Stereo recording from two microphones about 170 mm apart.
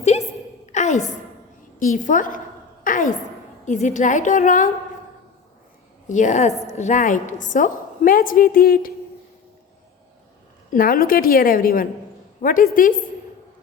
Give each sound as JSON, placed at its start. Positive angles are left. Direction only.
{"t": 0.0, "sound": "a sound", "side_deg": 40}
{"t": 0.7, "sound": "music", "side_deg": 45}
{"t": 1.8, "sound": "a woman's voice", "side_deg": 50}
{"t": 2.9, "sound": "a sound", "side_deg": 50}
{"t": 3.7, "sound": "a woman's voice", "side_deg": 45}
{"t": 6.1, "sound": "a woman's voice", "side_deg": 45}
{"t": 10.7, "sound": "a woman's voice", "side_deg": 55}